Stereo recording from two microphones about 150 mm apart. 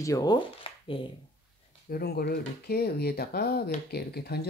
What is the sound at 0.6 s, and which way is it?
Hands, 35° left (ahead or behind).